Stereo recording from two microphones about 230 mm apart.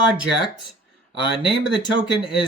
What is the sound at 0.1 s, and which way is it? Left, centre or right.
Speech, centre.